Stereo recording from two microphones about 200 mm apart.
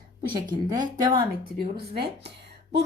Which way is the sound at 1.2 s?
50° right (ahead or behind).